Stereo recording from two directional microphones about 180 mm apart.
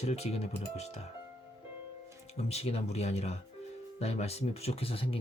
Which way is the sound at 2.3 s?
35° left (ahead or behind).